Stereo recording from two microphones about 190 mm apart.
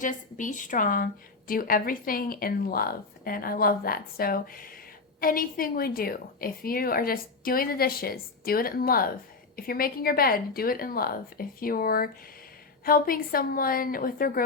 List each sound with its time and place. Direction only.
0.0 s a woman's voice: 40° left (ahead or behind)